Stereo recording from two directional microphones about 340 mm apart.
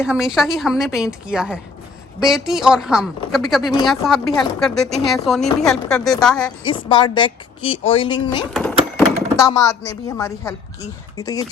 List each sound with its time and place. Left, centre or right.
0.0 s a woman's voice: centre
3.6 s speech: centre
3.8 s a woman's voice: centre
6.7 s speech: centre
8.5 s a sound: centre
9.9 s speech: centre